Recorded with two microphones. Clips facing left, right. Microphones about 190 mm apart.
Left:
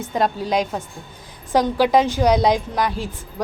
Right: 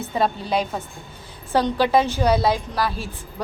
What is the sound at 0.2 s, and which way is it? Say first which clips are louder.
A woman's voice: left 2 dB; 10° left (ahead or behind).